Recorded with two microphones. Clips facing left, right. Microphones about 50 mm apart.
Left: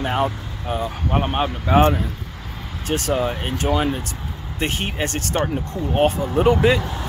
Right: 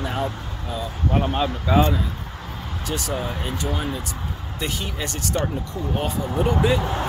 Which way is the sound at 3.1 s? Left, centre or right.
Left.